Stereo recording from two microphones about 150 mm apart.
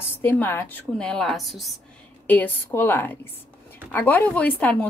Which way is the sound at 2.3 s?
10° left (ahead or behind).